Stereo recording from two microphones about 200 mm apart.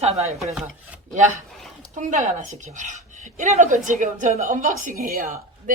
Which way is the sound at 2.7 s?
40° right (ahead or behind).